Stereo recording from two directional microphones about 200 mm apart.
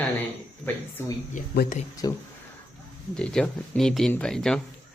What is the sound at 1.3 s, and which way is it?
Speech, 40° left (ahead or behind).